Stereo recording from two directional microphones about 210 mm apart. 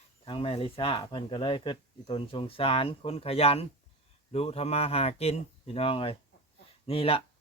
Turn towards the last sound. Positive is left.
turn(degrees=25)  # may be behind; listen again after turning